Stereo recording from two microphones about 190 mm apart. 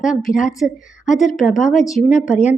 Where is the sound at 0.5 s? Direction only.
Centre (ahead or behind).